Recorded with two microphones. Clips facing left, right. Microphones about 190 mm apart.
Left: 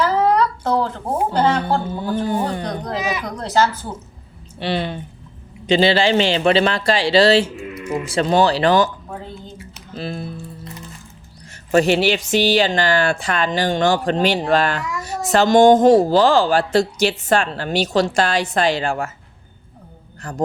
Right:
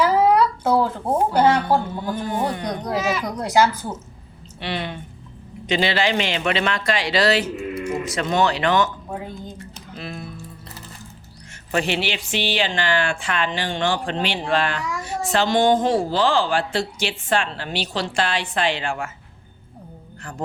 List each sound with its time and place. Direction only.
0.0 s a sound: 10° right (ahead or behind)
2.1 s a woman's voice: 35° left (ahead or behind)
2.6 s speech: 10° right (ahead or behind)
3.0 s speech: 15° left (ahead or behind)
3.2 s speech: 10° right (ahead or behind)
4.6 s a woman's voice: 30° left (ahead or behind)
9.0 s a sound: 10° right (ahead or behind)
9.9 s a woman's voice: 30° left (ahead or behind)
11.7 s a woman's voice: 40° left (ahead or behind)